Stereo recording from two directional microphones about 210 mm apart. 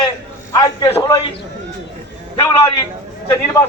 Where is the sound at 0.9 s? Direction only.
20° left (ahead or behind).